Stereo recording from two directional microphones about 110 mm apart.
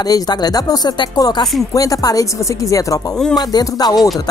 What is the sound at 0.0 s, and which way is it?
Speech, 40° left (ahead or behind).